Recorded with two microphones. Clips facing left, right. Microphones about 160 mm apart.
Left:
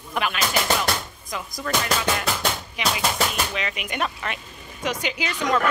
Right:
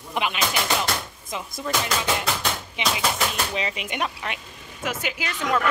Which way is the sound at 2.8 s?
25° right (ahead or behind).